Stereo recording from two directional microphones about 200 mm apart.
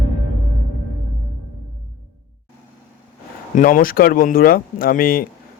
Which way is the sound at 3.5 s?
45° left (ahead or behind).